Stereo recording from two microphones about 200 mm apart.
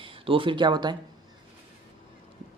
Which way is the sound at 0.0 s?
25° right (ahead or behind).